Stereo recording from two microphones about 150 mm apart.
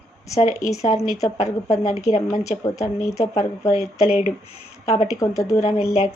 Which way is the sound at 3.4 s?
45° left (ahead or behind).